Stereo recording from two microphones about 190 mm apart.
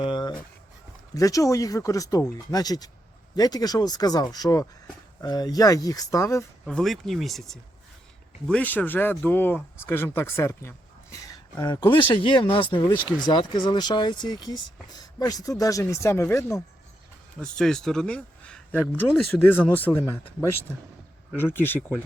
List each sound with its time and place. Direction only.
0.0 s a sound: 25° left (ahead or behind)
1.1 s speech: 15° left (ahead or behind)
6.7 s speech: centre (ahead or behind)
17.4 s speech: 5° left (ahead or behind)